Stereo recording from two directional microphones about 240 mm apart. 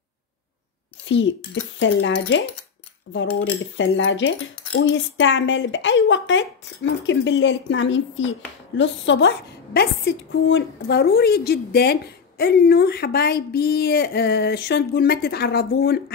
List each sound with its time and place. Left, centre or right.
1.0 s a woman's voice: left